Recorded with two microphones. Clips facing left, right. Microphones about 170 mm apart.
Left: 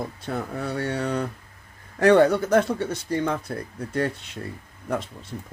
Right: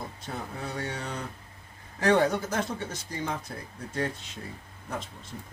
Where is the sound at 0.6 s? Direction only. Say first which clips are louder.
Left 8 dB; 65° left (ahead or behind).